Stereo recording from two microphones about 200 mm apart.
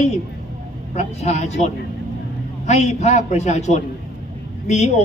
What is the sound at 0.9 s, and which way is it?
A man's voice, 35° left (ahead or behind).